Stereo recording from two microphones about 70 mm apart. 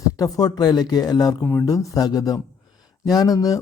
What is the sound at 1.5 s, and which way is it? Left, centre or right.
A man's voice, left.